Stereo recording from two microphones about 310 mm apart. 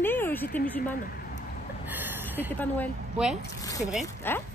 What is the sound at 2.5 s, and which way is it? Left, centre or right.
Speech, centre.